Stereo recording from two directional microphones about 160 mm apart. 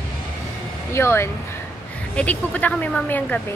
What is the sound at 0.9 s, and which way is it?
Speech, 15° left (ahead or behind).